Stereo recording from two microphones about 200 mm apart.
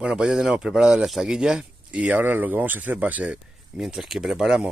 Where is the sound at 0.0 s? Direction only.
5° right (ahead or behind).